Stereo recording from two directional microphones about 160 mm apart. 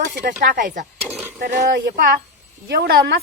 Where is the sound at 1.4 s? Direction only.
65° right (ahead or behind).